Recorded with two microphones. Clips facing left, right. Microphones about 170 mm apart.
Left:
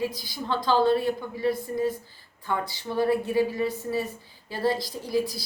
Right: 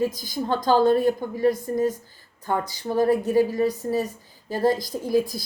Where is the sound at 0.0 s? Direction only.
45° right (ahead or behind).